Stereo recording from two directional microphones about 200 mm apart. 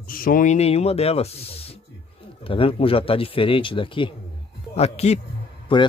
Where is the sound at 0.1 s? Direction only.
45° left (ahead or behind).